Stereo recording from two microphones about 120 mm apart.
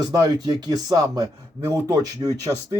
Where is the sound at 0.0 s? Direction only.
30° right (ahead or behind).